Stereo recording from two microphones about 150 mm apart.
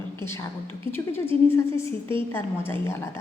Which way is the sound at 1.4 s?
20° left (ahead or behind).